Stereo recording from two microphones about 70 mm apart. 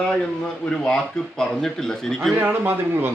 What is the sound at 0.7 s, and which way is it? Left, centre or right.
A man's voice, centre.